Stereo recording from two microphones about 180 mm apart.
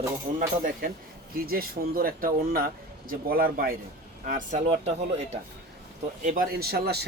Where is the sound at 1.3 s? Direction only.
55° right (ahead or behind).